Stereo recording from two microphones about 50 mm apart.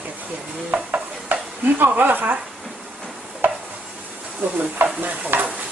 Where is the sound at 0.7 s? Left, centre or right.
Right.